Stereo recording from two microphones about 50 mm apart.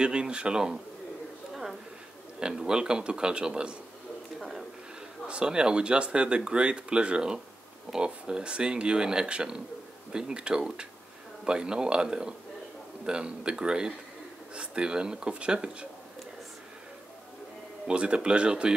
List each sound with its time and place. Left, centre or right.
0.0 s speech: centre
1.5 s a sound: centre
2.4 s speech: centre
4.4 s a sound: centre
5.3 s speech: centre
17.8 s speech: centre